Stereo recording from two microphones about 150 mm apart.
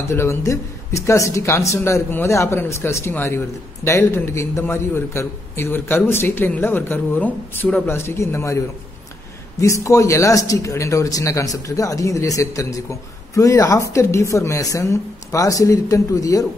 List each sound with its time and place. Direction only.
0.1 s a man's voice: 15° left (ahead or behind)